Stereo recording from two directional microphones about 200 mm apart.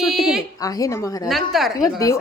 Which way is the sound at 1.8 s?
15° left (ahead or behind).